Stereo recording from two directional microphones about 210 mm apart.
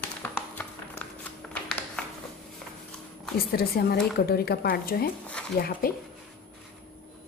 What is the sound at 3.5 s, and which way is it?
A woman's voice, 45° left (ahead or behind).